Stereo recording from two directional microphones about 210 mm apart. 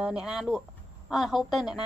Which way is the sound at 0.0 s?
Centre (ahead or behind).